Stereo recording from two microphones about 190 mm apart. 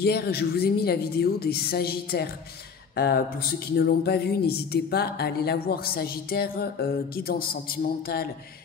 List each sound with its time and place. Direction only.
0.0 s speech: 55° left (ahead or behind)